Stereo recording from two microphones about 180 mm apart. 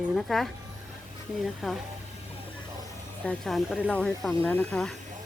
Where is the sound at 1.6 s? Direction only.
Centre (ahead or behind).